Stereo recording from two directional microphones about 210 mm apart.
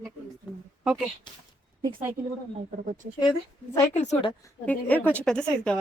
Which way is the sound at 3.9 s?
30° left (ahead or behind).